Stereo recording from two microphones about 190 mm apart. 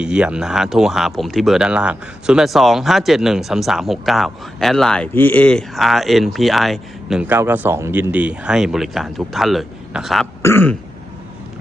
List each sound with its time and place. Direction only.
0.0 s speech: 5° right (ahead or behind)
10.4 s throat clearing: 10° left (ahead or behind)